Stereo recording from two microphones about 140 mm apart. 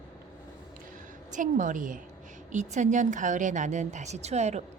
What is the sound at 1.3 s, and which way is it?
A woman's voice, 65° right (ahead or behind).